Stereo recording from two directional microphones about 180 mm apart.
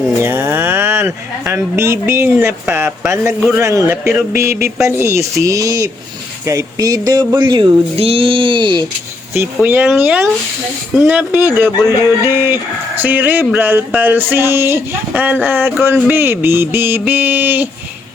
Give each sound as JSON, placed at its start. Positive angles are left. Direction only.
{"t": 0.2, "sound": "speech", "side_deg": -10}
{"t": 9.4, "sound": "speech", "side_deg": -10}